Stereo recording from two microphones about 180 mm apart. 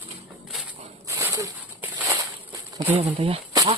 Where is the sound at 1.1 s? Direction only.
15° right (ahead or behind).